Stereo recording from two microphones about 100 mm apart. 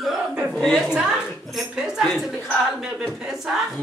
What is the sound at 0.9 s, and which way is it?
A woman's voice, 10° right (ahead or behind).